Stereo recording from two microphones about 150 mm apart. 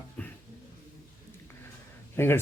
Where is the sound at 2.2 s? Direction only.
15° left (ahead or behind).